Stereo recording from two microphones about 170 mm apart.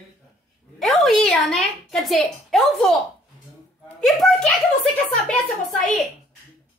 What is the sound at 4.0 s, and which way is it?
Speech, centre (ahead or behind).